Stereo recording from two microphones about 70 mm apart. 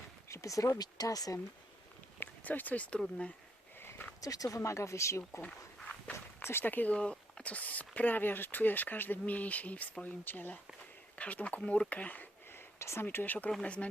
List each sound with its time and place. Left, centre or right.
0.3 s speech: left
0.8 s speech: left
2.1 s a sound: left
3.8 s a sound: left
4.2 s speech: left
5.4 s walk: centre
6.1 s speech: left
13.1 s speech: left
13.5 s speech: centre